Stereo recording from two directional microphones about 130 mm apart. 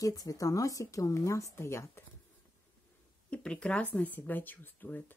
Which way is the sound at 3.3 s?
10° left (ahead or behind).